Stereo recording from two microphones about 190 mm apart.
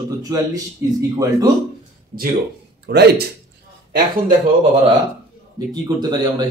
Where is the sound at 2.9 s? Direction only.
60° right (ahead or behind).